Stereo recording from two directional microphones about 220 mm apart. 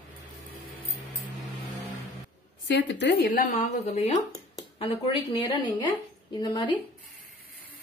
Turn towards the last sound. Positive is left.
turn(degrees=20)  # may be behind; listen again after turning